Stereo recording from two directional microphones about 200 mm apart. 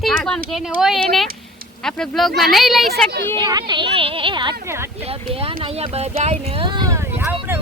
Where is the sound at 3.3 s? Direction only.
20° right (ahead or behind).